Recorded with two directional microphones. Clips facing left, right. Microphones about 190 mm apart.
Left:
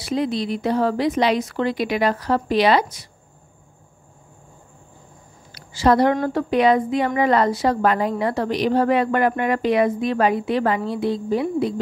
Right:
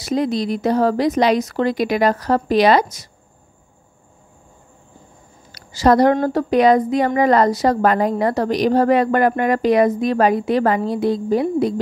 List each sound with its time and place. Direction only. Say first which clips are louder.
0.0 s a woman's voice: right 3 dB; 40° right (ahead or behind)
5.5 s a sound: right 3 dB; 40° right (ahead or behind)
6.2 s a woman's voice: right 3 dB; 40° right (ahead or behind)